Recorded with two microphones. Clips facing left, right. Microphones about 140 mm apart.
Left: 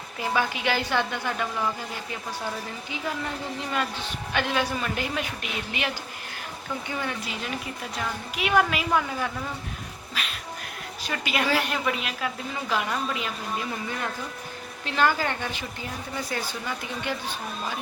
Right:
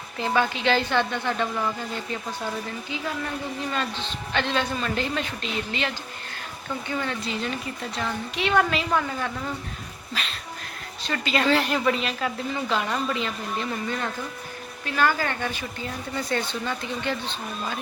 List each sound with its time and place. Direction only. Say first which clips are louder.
0.2 s a woman's voice: right 3 dB; 10° left (ahead or behind)
4.4 s a woman's voice: right 1 dB; 10° left (ahead or behind)
14.8 s a woman's voice: even; 20° left (ahead or behind)
16.1 s a woman's voice: right 5 dB; 5° left (ahead or behind)